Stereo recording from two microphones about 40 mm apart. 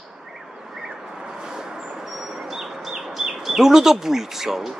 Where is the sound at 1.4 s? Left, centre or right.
Centre.